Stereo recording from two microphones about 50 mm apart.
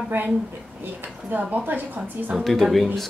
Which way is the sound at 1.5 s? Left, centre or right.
Right.